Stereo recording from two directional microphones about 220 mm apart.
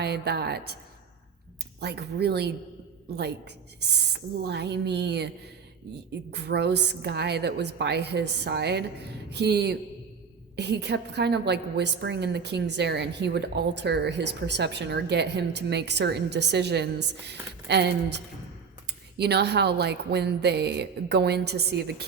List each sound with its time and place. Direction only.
0.0 s a woman's voice: 50° right (ahead or behind)
1.8 s a woman's voice: 50° right (ahead or behind)
4.4 s a woman's voice: 50° right (ahead or behind)
6.3 s a woman's voice: 50° right (ahead or behind)